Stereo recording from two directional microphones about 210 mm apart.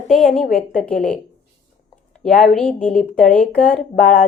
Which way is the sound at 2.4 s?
5° left (ahead or behind).